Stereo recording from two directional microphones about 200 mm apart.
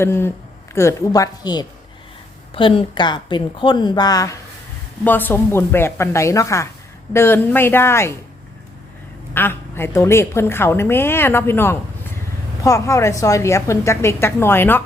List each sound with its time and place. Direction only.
0.0 s a woman's voice: 10° left (ahead or behind)
9.3 s a woman's voice: 10° left (ahead or behind)